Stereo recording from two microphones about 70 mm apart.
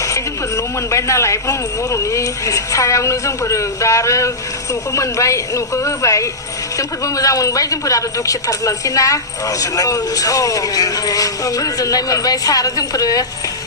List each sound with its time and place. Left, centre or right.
0.0 s a man's voice: left